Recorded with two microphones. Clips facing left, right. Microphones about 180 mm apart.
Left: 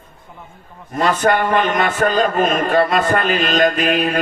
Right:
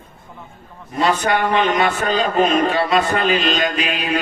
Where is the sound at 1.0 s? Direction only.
50° left (ahead or behind).